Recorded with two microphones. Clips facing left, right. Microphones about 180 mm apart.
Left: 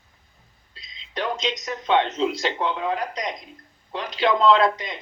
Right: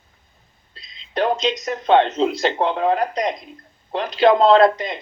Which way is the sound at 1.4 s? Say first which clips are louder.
Right 6 dB; 55° right (ahead or behind).